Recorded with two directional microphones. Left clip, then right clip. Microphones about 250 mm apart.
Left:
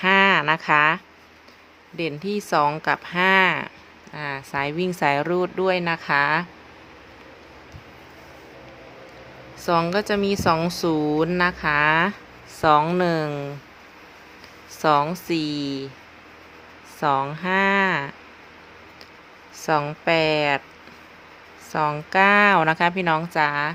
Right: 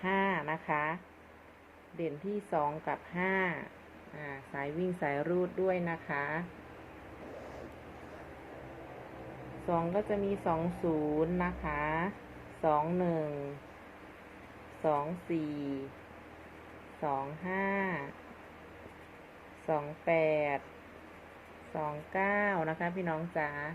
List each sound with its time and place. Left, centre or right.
0.0 s a sound: left
2.0 s speech: left
9.6 s speech: left
14.8 s speech: left
17.0 s speech: left
19.6 s speech: left
21.7 s speech: left